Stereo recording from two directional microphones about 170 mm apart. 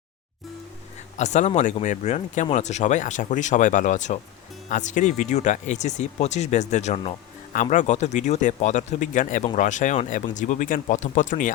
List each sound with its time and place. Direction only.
1.1 s speech: 45° left (ahead or behind)